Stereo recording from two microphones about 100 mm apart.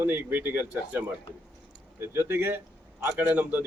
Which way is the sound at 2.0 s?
25° right (ahead or behind).